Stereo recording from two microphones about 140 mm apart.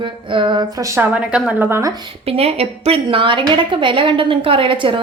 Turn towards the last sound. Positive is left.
turn(degrees=-35)  # may be behind; listen again after turning